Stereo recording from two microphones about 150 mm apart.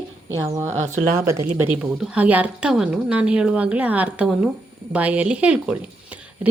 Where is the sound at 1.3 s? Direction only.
15° right (ahead or behind).